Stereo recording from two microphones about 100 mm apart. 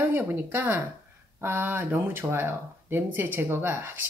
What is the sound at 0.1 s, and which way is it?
Speech, 20° right (ahead or behind).